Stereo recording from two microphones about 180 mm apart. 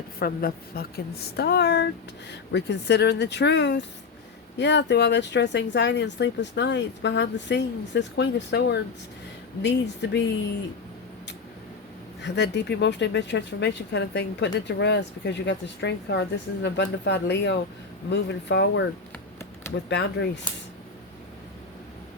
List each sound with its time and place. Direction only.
0.2 s a woman's voice: 55° left (ahead or behind); by 10.2 s 75° left (ahead or behind)
12.2 s speech: 70° left (ahead or behind)
19.1 s a sound: 15° left (ahead or behind)
19.7 s speech: 75° left (ahead or behind)